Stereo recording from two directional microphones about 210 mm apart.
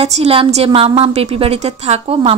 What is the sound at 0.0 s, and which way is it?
A woman's voice, 30° right (ahead or behind).